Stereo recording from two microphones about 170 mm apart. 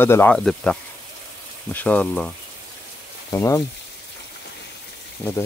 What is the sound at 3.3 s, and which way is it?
Speech, 15° left (ahead or behind).